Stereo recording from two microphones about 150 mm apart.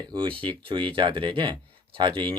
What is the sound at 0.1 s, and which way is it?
Speech, 35° right (ahead or behind).